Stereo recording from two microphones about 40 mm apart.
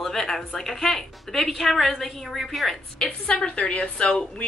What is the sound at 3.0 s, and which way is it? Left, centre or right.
Speech, centre.